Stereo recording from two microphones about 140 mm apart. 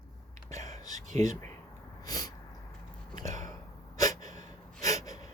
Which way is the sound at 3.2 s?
65° right (ahead or behind).